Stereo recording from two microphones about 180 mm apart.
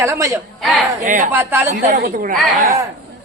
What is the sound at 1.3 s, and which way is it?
Speech, 10° right (ahead or behind).